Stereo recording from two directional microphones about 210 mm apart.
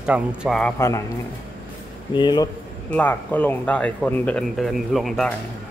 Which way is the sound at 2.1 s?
20° left (ahead or behind).